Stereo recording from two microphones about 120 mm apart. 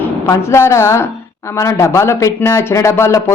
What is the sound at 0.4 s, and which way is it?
Speech, 20° left (ahead or behind).